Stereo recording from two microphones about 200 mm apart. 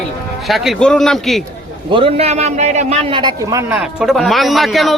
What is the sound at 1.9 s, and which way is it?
A man's voice, 25° right (ahead or behind).